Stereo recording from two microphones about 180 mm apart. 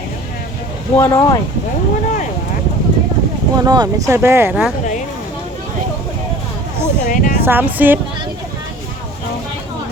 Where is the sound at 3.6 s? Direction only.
20° right (ahead or behind).